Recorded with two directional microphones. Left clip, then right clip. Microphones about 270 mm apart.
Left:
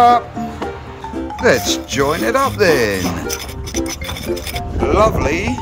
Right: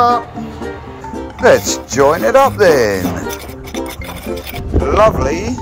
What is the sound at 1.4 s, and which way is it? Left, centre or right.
Speech, centre.